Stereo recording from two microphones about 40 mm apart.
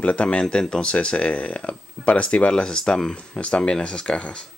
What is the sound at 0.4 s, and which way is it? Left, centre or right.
Speech, left.